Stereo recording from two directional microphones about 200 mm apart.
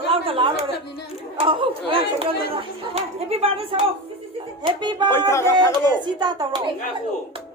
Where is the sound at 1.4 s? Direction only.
25° right (ahead or behind).